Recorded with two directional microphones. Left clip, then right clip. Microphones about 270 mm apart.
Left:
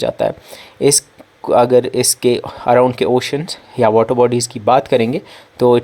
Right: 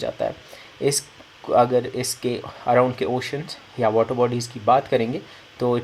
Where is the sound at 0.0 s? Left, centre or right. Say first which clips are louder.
Left 9 dB; left.